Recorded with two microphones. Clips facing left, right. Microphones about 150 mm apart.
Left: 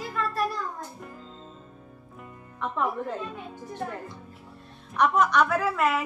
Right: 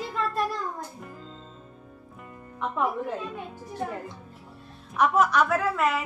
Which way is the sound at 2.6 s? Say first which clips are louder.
Right 1 dB; 10° right (ahead or behind).